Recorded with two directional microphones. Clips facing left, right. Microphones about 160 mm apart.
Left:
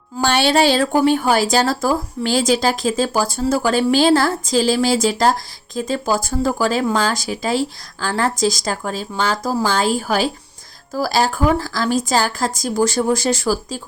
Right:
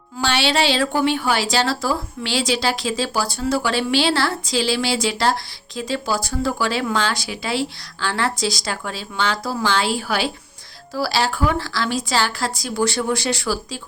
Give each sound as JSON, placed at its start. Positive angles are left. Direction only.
{"t": 0.2, "sound": "a woman's voice", "side_deg": 45}